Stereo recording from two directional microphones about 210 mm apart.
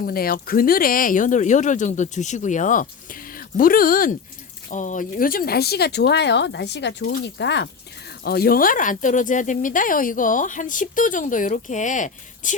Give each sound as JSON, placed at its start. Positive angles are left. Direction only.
{"t": 0.0, "sound": "speech", "side_deg": 45}